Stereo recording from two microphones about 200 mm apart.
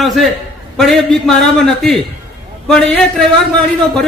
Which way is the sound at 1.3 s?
Centre (ahead or behind).